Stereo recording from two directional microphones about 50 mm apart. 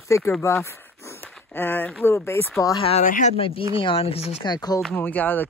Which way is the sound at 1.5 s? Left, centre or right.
Left.